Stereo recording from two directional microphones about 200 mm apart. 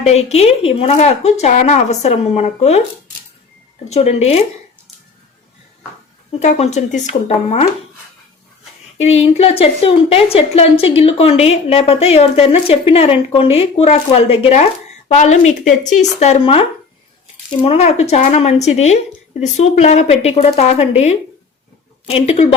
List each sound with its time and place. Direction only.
0.0 s speech: 30° left (ahead or behind)
3.8 s speech: 30° left (ahead or behind)
6.4 s speech: 35° left (ahead or behind)
9.0 s a woman's voice: 30° left (ahead or behind)